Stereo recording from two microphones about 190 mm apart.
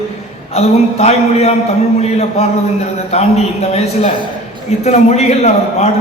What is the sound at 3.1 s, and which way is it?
Speech, 35° left (ahead or behind).